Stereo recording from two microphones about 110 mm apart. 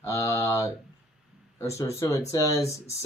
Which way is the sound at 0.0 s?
30° left (ahead or behind).